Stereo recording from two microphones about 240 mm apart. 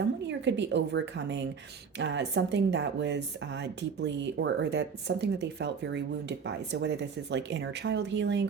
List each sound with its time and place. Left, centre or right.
0.3 s speech: right